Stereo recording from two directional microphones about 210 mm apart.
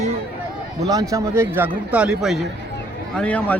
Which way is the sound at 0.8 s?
15° right (ahead or behind).